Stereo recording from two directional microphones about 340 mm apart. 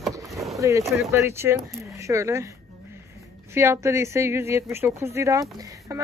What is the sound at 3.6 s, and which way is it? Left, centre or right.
Speech, centre.